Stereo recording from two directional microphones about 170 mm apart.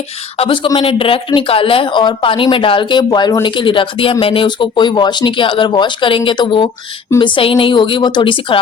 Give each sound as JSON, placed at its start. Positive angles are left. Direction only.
{"t": 0.3, "sound": "speech", "side_deg": 30}